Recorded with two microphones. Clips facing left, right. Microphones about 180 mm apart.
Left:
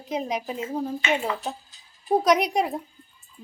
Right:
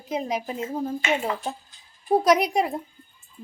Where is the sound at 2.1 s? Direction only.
Centre (ahead or behind).